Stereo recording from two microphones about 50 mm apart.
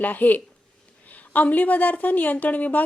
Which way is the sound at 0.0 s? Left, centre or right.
Left.